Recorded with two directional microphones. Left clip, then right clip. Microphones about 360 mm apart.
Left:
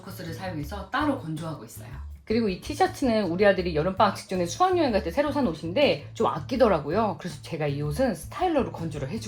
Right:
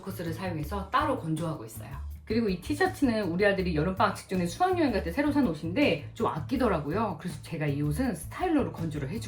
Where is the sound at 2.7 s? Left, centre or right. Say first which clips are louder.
Left 4 dB; centre.